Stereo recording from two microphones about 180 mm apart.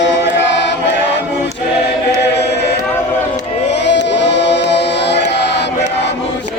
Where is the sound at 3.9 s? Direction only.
75° left (ahead or behind).